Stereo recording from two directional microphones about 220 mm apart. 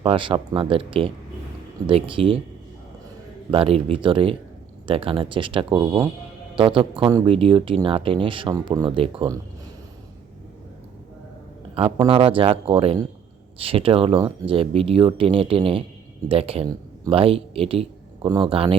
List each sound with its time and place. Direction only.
0.0 s speech: 25° right (ahead or behind)
3.5 s speech: 25° right (ahead or behind)
5.8 s speech: 15° right (ahead or behind)
6.6 s speech: 25° right (ahead or behind)
11.7 s speech: 25° right (ahead or behind)